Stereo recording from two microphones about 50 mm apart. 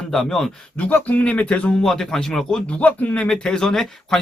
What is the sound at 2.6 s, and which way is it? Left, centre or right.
Speech, left.